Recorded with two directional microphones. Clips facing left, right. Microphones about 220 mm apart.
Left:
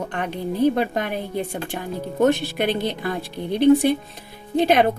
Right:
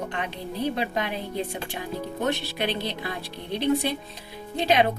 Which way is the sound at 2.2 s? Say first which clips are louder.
Left 9 dB; 50° left (ahead or behind).